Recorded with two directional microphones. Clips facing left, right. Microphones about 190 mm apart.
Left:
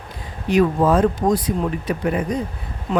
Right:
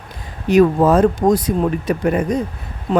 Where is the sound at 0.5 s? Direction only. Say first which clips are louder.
Right 4 dB; 45° right (ahead or behind).